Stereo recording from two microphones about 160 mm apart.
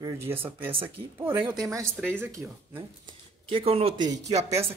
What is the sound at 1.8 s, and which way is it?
Speech, 5° left (ahead or behind).